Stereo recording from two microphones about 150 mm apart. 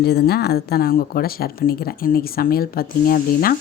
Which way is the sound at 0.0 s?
90° left.